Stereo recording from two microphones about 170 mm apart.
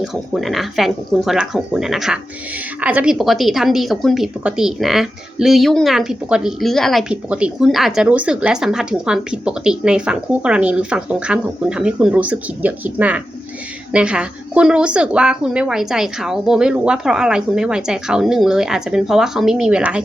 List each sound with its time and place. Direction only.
0.0 s a woman's voice: centre (ahead or behind)